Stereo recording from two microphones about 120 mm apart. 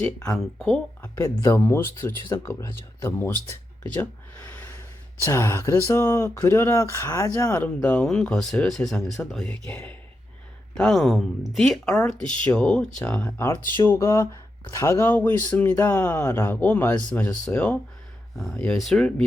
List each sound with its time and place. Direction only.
0.3 s speech: 5° left (ahead or behind)
1.1 s speech: 25° left (ahead or behind)
4.0 s a sound: 15° left (ahead or behind)
5.2 s speech: 25° left (ahead or behind)
18.3 s speech: centre (ahead or behind)